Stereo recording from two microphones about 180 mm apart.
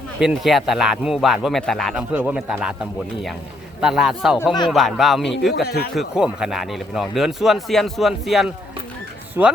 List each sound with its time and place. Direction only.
0.2 s speech: centre (ahead or behind)
3.8 s speech: 5° right (ahead or behind)
5.6 s speech: 60° left (ahead or behind)
5.9 s speech: 5° right (ahead or behind)
9.4 s speech: 15° right (ahead or behind)